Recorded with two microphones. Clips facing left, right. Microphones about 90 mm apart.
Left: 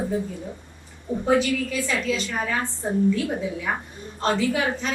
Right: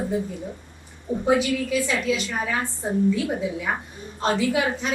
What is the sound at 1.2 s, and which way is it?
A woman's voice, 10° right (ahead or behind).